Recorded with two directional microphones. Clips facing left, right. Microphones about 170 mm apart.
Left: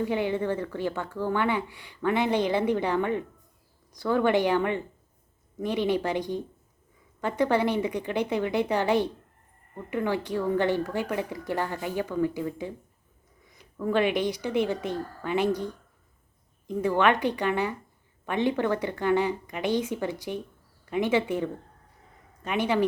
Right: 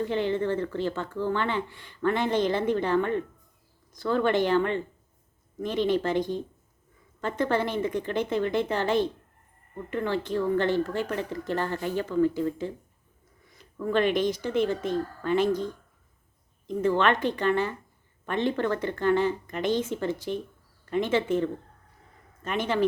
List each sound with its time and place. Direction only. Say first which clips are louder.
0.0 s speech: even; 10° left (ahead or behind)
13.7 s speech: even; 10° left (ahead or behind)